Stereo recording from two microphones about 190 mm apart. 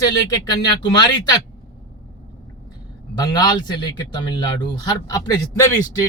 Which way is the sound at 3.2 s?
20° left (ahead or behind).